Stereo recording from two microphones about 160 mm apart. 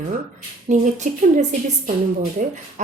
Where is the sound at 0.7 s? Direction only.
50° right (ahead or behind).